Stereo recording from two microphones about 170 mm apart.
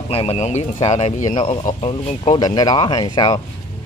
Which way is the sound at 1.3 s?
30° left (ahead or behind).